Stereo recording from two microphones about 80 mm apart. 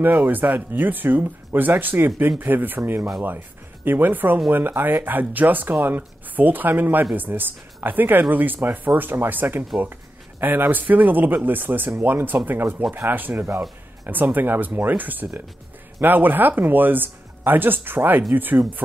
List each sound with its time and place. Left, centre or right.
0.0 s speech: right